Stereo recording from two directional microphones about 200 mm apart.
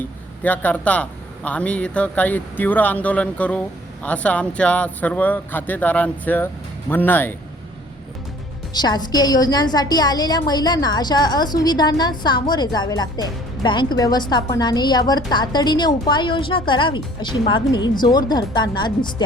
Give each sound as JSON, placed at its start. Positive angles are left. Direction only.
{"t": 0.4, "sound": "speech", "side_deg": 10}
{"t": 8.7, "sound": "a woman's voice", "side_deg": 20}